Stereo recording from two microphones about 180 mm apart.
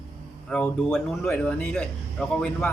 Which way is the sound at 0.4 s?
5° left (ahead or behind).